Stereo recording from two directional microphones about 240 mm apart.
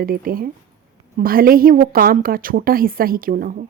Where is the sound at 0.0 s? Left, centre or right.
Right.